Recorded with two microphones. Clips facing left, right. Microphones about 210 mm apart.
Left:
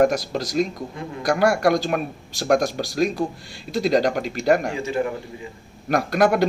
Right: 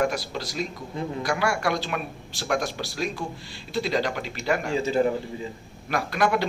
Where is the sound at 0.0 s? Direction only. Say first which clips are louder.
Left 7 dB; 40° left (ahead or behind).